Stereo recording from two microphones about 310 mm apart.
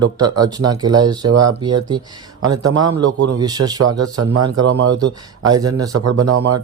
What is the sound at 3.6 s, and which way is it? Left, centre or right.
Speech, right.